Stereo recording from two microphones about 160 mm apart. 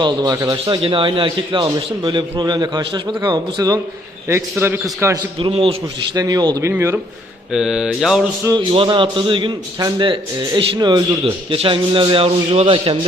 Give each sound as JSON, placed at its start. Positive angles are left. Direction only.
{"t": 0.0, "sound": "a man's voice", "side_deg": -25}
{"t": 5.4, "sound": "a man's voice", "side_deg": -35}
{"t": 6.1, "sound": "a man's voice", "side_deg": -25}
{"t": 7.5, "sound": "mantra", "side_deg": -5}
{"t": 8.7, "sound": "a man's voice", "side_deg": -35}